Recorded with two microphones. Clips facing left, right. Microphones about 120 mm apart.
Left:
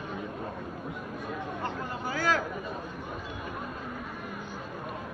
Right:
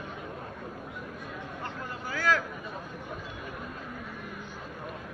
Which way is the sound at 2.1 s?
20° left (ahead or behind).